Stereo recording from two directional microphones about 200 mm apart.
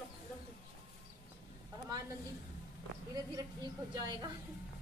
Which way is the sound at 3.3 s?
20° right (ahead or behind).